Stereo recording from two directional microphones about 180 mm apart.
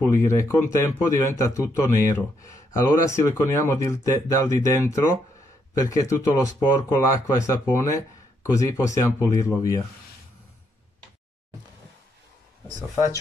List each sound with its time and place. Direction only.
0.0 s speech: 15° left (ahead or behind)